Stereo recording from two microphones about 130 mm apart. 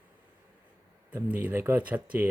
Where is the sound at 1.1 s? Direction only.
15° right (ahead or behind).